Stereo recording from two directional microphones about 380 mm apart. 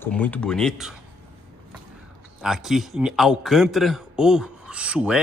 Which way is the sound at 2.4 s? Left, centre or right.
Centre.